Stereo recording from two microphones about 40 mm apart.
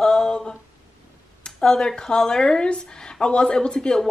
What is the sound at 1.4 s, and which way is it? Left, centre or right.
Speech, left.